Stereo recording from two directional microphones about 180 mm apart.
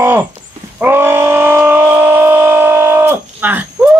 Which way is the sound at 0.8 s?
10° right (ahead or behind).